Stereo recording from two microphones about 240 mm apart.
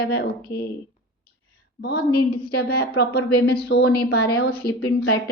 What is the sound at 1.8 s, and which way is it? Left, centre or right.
A woman's voice, left.